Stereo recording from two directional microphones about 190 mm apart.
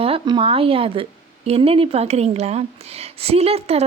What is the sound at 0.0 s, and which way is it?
Speech, 30° right (ahead or behind).